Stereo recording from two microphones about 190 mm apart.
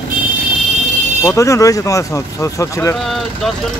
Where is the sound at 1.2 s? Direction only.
15° left (ahead or behind).